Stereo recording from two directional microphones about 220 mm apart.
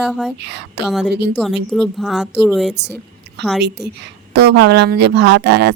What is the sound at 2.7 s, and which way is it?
Speech, 50° right (ahead or behind).